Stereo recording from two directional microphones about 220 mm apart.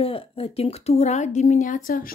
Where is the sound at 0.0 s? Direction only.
25° left (ahead or behind).